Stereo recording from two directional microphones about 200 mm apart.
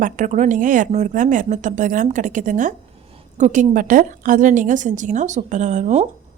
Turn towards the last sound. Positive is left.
turn(degrees=-35)  # may be behind; listen again after turning